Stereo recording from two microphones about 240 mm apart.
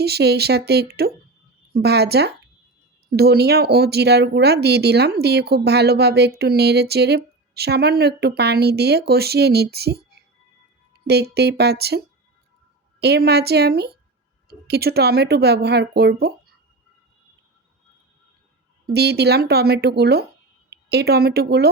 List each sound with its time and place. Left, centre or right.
0.0 s speech: right
18.9 s a woman's voice: right